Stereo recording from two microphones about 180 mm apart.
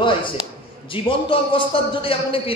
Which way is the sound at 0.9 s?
30° left (ahead or behind).